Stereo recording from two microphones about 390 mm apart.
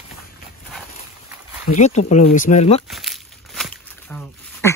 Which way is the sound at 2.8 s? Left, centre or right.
Centre.